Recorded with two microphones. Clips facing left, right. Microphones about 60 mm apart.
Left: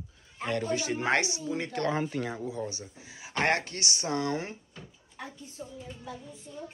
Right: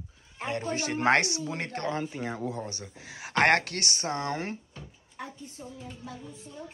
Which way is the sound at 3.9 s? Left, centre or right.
Right.